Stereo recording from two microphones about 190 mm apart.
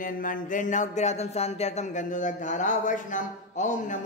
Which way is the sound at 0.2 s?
45° left (ahead or behind).